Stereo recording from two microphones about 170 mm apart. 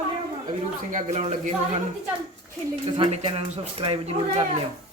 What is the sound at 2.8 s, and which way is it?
Speech, 35° right (ahead or behind).